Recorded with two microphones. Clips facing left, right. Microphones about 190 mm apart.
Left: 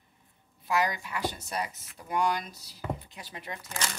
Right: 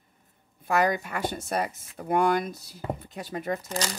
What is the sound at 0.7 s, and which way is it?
Speech, 55° right (ahead or behind).